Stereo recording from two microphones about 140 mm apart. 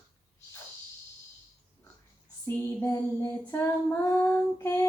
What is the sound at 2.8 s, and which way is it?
Child singing, 20° left (ahead or behind).